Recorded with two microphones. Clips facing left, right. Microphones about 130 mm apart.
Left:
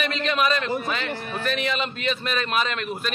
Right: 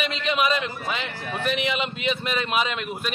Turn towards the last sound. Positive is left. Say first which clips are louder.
# even
turn(degrees=-15)  # may be behind; listen again after turning